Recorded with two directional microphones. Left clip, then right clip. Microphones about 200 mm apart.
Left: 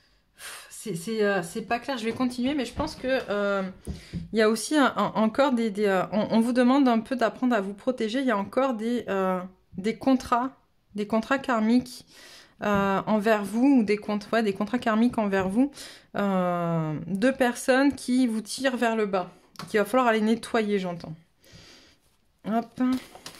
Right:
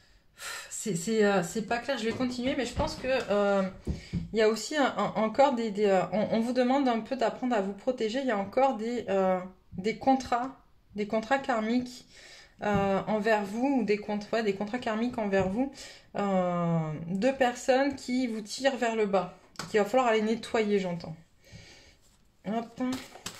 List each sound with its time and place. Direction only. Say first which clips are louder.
0.4 s a sound: right 3 dB; 30° left (ahead or behind)
1.5 s speech: left 2 dB; 35° left (ahead or behind)
22.4 s speech: left 6 dB; 45° left (ahead or behind)